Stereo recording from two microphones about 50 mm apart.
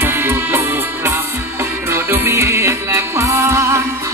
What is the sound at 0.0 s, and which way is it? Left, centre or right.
Music, right.